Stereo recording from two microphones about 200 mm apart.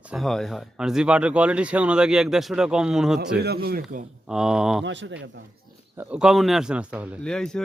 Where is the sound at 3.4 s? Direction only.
50° right (ahead or behind).